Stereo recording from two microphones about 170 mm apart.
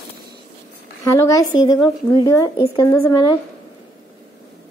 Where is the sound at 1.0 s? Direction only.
20° left (ahead or behind).